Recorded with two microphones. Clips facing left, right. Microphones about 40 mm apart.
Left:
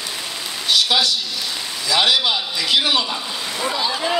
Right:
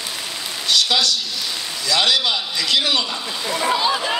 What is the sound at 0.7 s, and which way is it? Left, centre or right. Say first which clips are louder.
Speech: left 1 dB; centre.